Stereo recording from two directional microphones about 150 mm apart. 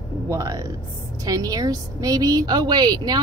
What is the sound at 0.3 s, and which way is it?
A woman's voice, 20° right (ahead or behind).